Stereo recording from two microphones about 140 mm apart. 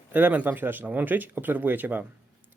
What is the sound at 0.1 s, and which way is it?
Speech, 15° right (ahead or behind).